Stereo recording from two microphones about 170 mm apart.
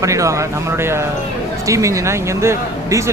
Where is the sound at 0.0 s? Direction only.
20° right (ahead or behind).